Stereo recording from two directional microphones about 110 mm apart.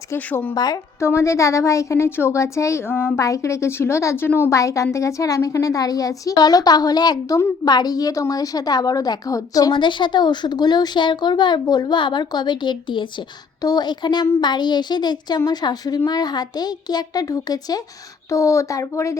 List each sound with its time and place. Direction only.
0.3 s speech: 15° left (ahead or behind)
0.5 s a woman's voice: 35° left (ahead or behind)
9.7 s a woman's voice: 45° left (ahead or behind); by 19.2 s 25° left (ahead or behind)